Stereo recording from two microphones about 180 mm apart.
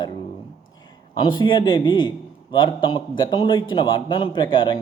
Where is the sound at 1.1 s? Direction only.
25° left (ahead or behind).